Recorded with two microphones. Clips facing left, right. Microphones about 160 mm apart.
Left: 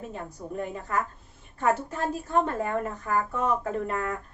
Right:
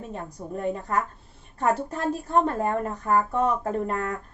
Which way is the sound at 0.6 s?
35° right (ahead or behind).